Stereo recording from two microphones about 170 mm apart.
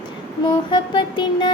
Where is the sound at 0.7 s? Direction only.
25° left (ahead or behind).